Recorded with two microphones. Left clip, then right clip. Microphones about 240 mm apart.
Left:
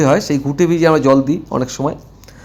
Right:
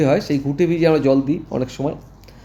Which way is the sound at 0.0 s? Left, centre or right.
Centre.